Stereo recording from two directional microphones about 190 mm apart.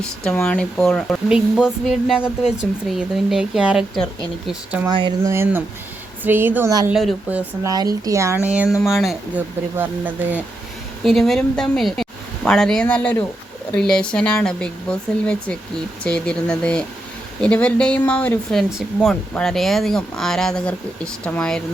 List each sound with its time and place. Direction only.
0.0 s speech: 5° left (ahead or behind)
4.9 s speech: 25° right (ahead or behind)
5.2 s speech: 15° right (ahead or behind)
6.9 s speech: centre (ahead or behind)
7.7 s speech: 20° right (ahead or behind)
11.0 s speech: centre (ahead or behind)